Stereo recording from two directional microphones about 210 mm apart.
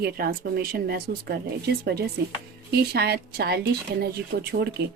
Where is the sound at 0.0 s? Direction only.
45° right (ahead or behind).